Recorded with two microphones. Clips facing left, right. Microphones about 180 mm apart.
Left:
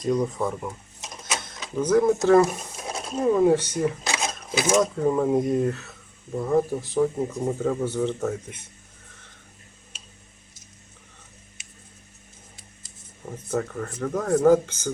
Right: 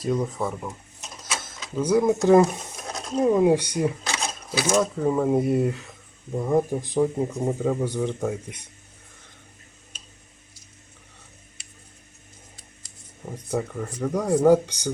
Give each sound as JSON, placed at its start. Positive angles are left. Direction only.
{"t": 0.0, "sound": "speech", "side_deg": -5}
{"t": 1.8, "sound": "speech", "side_deg": -10}
{"t": 4.0, "sound": "a sound", "side_deg": 15}
{"t": 4.8, "sound": "speech", "side_deg": 0}
{"t": 13.2, "sound": "speech", "side_deg": -10}